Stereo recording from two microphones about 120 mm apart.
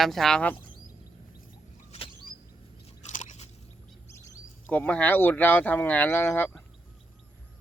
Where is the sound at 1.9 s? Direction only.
50° left (ahead or behind).